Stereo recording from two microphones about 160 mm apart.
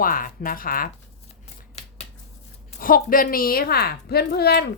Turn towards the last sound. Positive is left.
turn(degrees=85)